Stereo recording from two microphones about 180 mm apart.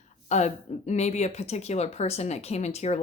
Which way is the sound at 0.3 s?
40° left (ahead or behind).